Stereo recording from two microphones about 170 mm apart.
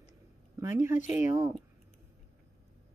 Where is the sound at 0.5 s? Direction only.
15° right (ahead or behind).